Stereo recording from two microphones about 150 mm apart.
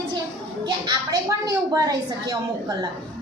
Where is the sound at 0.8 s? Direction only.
25° right (ahead or behind).